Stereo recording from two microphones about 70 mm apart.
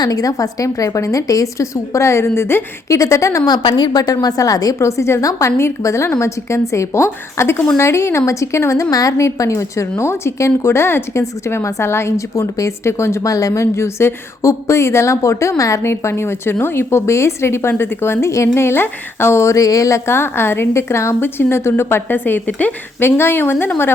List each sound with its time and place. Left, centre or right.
0.0 s a woman's voice: left
2.9 s a woman's voice: left
3.4 s a woman's voice: left
4.8 s a woman's voice: left
15.8 s a woman's voice: left
20.1 s a woman's voice: left
23.0 s a woman's voice: left